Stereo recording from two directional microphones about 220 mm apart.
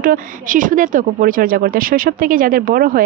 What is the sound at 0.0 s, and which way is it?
A woman's voice, 40° right (ahead or behind).